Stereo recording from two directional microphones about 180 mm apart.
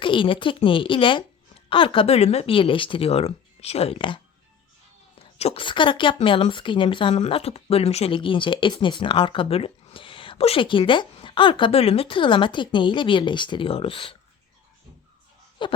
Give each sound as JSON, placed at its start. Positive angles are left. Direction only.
{"t": 0.0, "sound": "speech", "side_deg": 30}
{"t": 5.2, "sound": "speech", "side_deg": 35}
{"t": 15.6, "sound": "speech", "side_deg": 25}